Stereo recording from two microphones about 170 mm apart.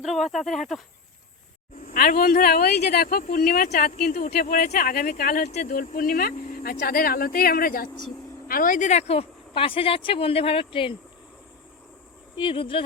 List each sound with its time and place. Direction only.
0.0 s speech: centre (ahead or behind)
1.9 s speech: 55° left (ahead or behind)
5.5 s speech: 45° left (ahead or behind)
12.4 s speech: 30° left (ahead or behind)